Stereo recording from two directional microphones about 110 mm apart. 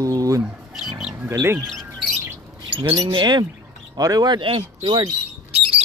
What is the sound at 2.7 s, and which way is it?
Speech, 50° right (ahead or behind).